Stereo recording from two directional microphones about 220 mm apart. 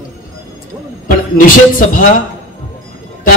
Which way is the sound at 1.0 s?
40° left (ahead or behind).